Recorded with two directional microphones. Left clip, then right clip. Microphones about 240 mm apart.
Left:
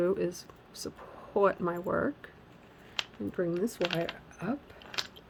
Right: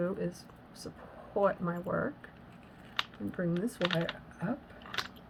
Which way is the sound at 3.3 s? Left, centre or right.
Left.